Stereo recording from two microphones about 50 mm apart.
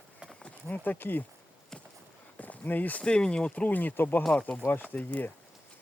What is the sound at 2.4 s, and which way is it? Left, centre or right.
Walk, left.